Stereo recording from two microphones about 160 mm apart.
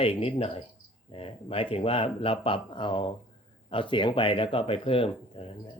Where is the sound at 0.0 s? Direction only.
35° left (ahead or behind).